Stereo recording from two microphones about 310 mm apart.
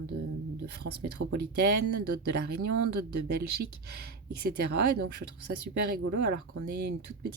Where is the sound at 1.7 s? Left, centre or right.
Right.